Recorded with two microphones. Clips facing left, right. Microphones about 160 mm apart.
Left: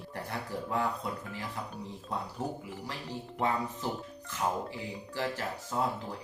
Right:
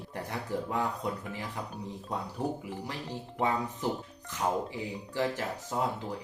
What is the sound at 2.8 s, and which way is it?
Speech, 20° right (ahead or behind).